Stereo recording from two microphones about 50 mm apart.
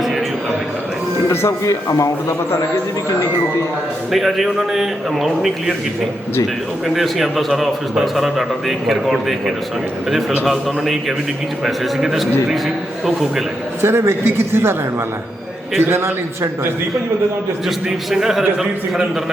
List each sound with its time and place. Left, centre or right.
1.3 s a man's voice: left
4.1 s speech: centre
6.8 s speech: centre
13.8 s a man's voice: right
15.8 s a man's voice: right
17.7 s a man's voice: centre